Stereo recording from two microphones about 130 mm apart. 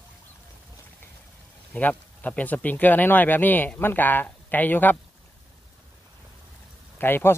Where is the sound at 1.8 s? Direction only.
10° left (ahead or behind).